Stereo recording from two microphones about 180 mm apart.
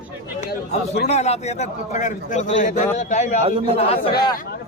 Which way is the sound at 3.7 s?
35° left (ahead or behind).